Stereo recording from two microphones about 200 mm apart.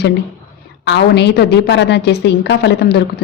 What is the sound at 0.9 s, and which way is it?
Speech, 60° left (ahead or behind).